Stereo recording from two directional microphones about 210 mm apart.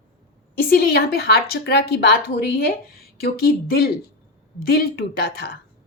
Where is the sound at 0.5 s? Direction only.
45° left (ahead or behind).